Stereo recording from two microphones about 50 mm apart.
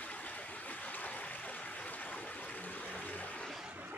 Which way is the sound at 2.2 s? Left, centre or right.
Left.